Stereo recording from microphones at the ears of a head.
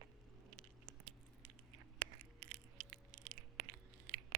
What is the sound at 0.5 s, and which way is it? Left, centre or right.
Patter, right.